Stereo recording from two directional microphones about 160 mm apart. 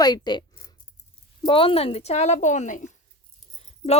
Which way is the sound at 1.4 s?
35° left (ahead or behind).